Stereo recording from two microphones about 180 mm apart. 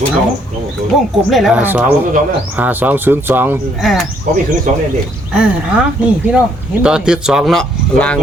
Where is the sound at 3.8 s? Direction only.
Centre (ahead or behind).